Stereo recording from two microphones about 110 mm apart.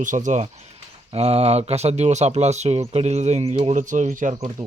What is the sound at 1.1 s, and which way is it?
Speech, 65° right (ahead or behind).